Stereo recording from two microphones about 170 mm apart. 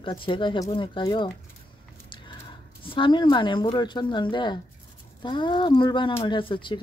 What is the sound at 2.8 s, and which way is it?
Speech, 30° left (ahead or behind).